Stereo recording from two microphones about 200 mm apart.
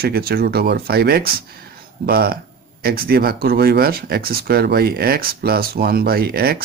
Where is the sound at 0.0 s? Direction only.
50° right (ahead or behind).